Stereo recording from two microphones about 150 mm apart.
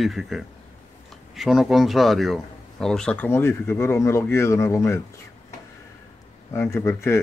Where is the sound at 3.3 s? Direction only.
15° left (ahead or behind).